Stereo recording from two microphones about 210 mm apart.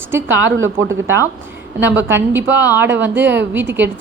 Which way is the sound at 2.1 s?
10° right (ahead or behind).